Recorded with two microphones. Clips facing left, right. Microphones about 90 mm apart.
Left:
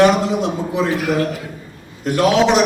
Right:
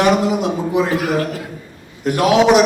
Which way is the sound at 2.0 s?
20° right (ahead or behind).